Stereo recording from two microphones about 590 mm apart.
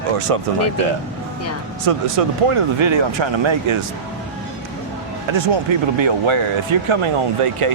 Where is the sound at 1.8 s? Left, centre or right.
Right.